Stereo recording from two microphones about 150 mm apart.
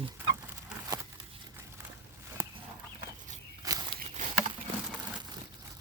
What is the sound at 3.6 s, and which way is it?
Walk, 30° right (ahead or behind).